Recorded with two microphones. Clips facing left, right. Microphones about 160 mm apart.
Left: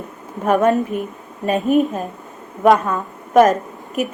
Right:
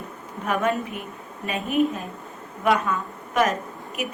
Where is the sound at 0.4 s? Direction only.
45° left (ahead or behind).